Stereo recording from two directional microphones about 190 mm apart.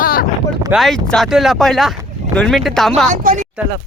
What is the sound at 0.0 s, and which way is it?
Wind noise, 50° left (ahead or behind).